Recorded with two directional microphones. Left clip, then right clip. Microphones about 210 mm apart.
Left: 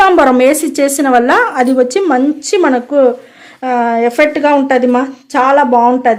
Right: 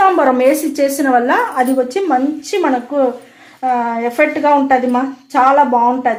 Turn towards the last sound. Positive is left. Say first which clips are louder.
# left 4 dB
turn(degrees=55)  # may be behind; listen again after turning